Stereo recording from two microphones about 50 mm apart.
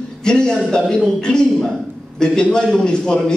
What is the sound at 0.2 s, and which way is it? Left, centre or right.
A man's voice, centre.